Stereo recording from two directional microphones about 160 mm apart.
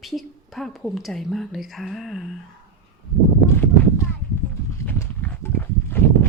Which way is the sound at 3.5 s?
10° left (ahead or behind).